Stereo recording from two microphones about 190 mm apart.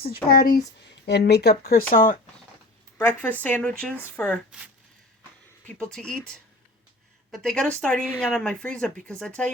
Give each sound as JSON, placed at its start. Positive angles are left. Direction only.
{"t": 0.3, "sound": "speech", "side_deg": 50}
{"t": 0.9, "sound": "speech", "side_deg": 60}
{"t": 3.0, "sound": "speech", "side_deg": 10}
{"t": 5.9, "sound": "a woman's voice", "side_deg": 5}